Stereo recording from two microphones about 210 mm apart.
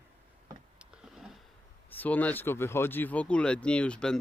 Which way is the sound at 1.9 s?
10° left (ahead or behind).